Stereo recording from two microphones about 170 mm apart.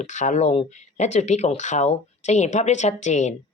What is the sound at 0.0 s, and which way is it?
Speech, 45° left (ahead or behind).